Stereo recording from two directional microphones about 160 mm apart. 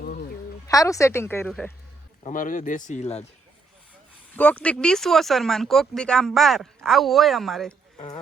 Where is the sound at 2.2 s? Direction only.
55° left (ahead or behind).